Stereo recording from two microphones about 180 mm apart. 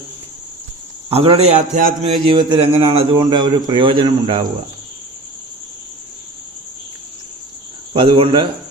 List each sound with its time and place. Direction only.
1.1 s speech: 30° right (ahead or behind)
1.7 s music: 45° right (ahead or behind)
2.1 s a man's voice: 25° right (ahead or behind)
7.9 s a man's voice: 30° right (ahead or behind)